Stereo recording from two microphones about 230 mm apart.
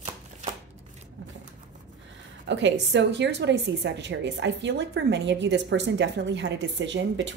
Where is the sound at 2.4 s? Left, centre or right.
Right.